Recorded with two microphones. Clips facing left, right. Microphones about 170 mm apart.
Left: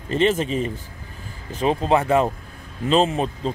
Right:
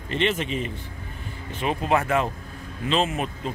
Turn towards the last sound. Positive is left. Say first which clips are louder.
# left 5 dB
turn(degrees=30)  # may be behind; listen again after turning